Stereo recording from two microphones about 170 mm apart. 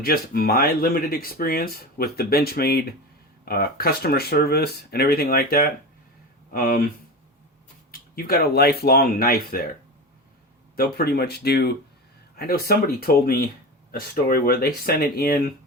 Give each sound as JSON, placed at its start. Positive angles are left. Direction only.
{"t": 0.0, "sound": "speech", "side_deg": 60}
{"t": 10.8, "sound": "speech", "side_deg": 65}